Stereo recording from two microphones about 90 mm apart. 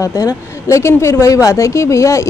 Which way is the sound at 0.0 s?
40° left (ahead or behind).